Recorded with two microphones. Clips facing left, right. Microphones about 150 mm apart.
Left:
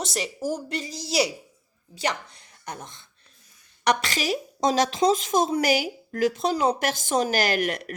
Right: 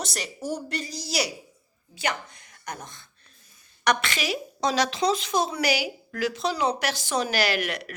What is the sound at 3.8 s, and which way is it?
A woman's voice, 35° left (ahead or behind).